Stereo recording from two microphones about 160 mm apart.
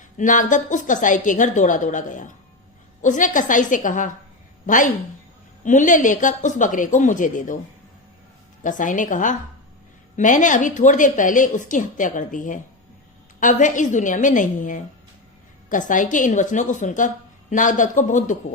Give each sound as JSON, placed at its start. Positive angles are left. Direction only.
{"t": 0.2, "sound": "a woman's voice", "side_deg": 55}
{"t": 8.6, "sound": "a woman's voice", "side_deg": 55}